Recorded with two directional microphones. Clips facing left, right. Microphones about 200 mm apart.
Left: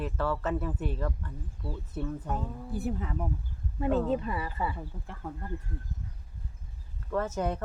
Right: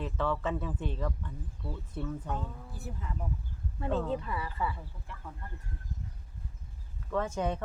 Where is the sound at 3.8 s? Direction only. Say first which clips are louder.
Left 5 dB; 15° left (ahead or behind).